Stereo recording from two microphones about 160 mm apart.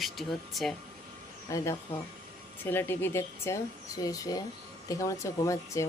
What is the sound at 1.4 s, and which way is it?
Speech, 20° left (ahead or behind).